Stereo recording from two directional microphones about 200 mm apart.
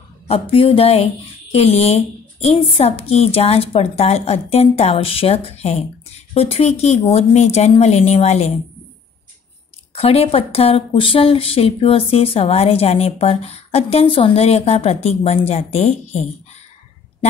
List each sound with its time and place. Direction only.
0.3 s a woman's voice: 30° left (ahead or behind)
9.9 s speech: 30° left (ahead or behind)